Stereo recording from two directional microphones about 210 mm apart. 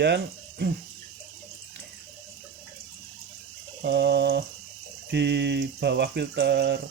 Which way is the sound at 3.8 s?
55° right (ahead or behind).